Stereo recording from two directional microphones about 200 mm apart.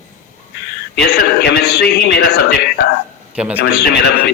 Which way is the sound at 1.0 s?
55° left (ahead or behind).